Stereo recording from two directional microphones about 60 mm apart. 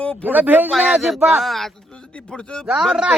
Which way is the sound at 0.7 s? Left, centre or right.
Centre.